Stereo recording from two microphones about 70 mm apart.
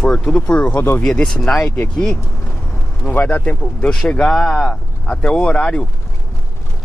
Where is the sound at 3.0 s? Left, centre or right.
Left.